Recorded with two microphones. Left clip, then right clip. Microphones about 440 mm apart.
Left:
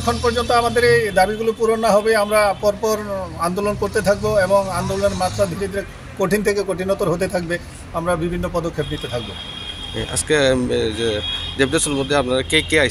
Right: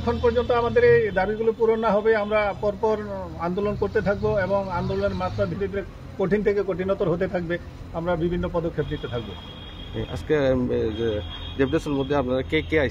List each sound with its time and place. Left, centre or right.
0.0 s speech: right
6.1 s speech: right
10.2 s speech: right